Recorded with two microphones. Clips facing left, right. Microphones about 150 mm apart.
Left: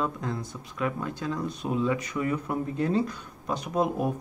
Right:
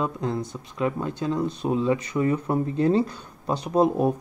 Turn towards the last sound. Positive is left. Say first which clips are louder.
# right 6 dB
turn(degrees=-30)  # may be behind; listen again after turning